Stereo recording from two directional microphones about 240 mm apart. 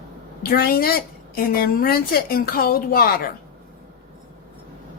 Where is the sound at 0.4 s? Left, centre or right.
Left.